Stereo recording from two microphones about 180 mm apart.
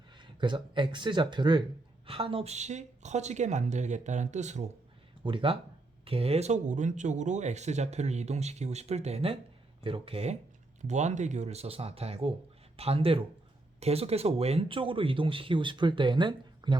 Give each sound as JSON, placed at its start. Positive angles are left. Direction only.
{"t": 0.2, "sound": "speech", "side_deg": -25}
{"t": 5.2, "sound": "speech", "side_deg": -30}